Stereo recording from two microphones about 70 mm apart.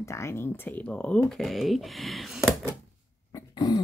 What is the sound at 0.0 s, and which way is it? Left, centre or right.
Speech, left.